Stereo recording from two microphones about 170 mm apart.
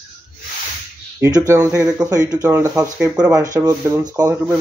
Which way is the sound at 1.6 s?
5° right (ahead or behind).